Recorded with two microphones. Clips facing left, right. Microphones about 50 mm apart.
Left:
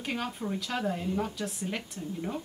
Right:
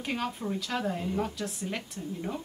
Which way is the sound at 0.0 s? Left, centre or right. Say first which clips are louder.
Right 1 dB; centre.